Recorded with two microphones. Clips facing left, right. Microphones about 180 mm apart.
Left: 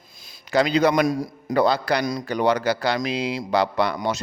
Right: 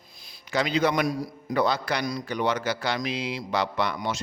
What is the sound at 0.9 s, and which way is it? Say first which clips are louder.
Speech: left 5 dB; 90° left.